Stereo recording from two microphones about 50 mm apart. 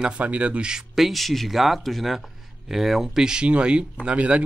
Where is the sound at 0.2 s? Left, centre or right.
Right.